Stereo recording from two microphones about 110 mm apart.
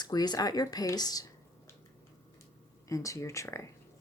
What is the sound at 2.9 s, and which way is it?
Speech, 30° left (ahead or behind).